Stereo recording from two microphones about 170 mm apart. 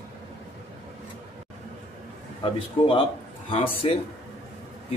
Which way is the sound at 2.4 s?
30° left (ahead or behind).